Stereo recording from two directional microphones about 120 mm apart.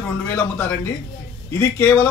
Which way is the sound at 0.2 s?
10° left (ahead or behind).